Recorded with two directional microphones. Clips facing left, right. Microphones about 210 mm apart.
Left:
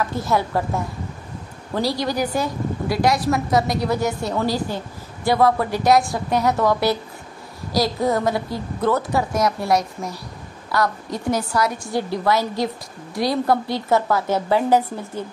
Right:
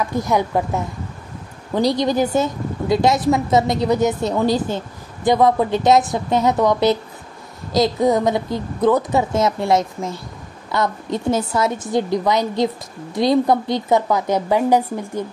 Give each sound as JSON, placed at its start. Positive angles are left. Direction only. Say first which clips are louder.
{"t": 0.0, "sound": "a woman's voice", "louder": "right 2 dB", "side_deg": -15}